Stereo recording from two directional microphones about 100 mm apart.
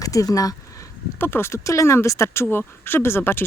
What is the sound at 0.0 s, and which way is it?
Speech, 35° left (ahead or behind).